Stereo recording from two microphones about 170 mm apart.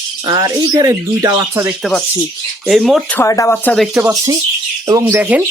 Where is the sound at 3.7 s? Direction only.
Centre (ahead or behind).